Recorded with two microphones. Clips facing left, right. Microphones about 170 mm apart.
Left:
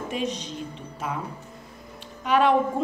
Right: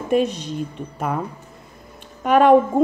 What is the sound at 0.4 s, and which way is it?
Speech, 55° right (ahead or behind).